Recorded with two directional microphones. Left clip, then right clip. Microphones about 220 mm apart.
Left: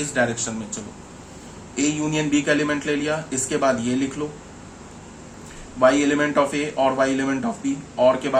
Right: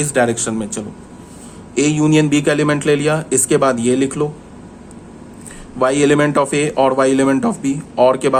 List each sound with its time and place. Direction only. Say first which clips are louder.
0.0 s speech: right 7 dB; 50° right (ahead or behind)
5.8 s speech: right 4 dB; 55° right (ahead or behind)